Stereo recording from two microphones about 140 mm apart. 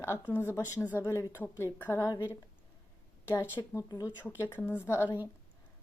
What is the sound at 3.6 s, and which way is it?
Speech, 30° left (ahead or behind).